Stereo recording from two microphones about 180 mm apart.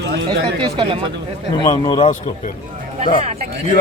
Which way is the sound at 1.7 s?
25° left (ahead or behind).